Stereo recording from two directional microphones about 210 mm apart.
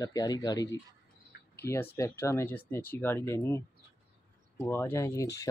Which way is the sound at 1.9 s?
15° left (ahead or behind).